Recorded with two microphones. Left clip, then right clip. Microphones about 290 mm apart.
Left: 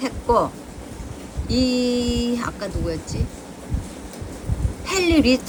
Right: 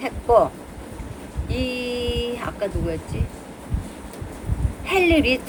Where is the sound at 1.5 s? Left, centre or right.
Centre.